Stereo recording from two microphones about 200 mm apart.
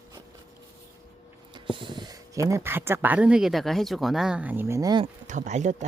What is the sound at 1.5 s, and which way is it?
Speech, 25° right (ahead or behind).